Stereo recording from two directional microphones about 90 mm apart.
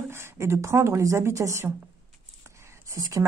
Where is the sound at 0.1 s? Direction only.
30° right (ahead or behind).